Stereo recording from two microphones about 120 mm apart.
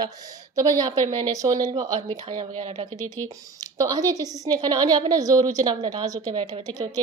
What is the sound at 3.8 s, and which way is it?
A woman's voice, 30° right (ahead or behind).